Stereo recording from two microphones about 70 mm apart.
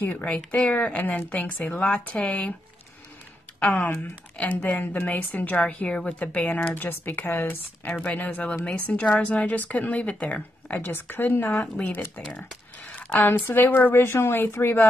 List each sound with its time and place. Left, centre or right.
0.0 s a woman's voice: left
4.6 s a woman's voice: left